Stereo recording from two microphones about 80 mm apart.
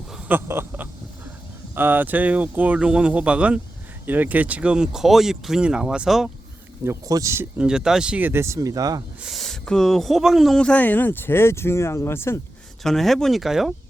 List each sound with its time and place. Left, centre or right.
0.3 s a sound: right
1.7 s speech: right; by 6.3 s centre
7.1 s speech: right
7.6 s speech: centre
8.2 s speech: right
9.2 s speech: centre
10.6 s speech: centre; by 12.4 s left
12.8 s speech: centre